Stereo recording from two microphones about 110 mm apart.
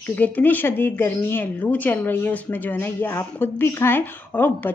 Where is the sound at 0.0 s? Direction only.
15° left (ahead or behind).